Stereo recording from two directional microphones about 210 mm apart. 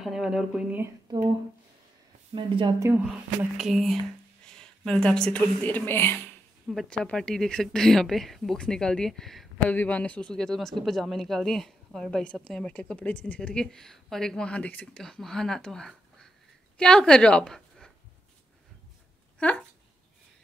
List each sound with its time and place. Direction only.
0.0 s a woman's voice: centre (ahead or behind)
2.3 s speech: 20° right (ahead or behind)
2.9 s a woman's voice: centre (ahead or behind)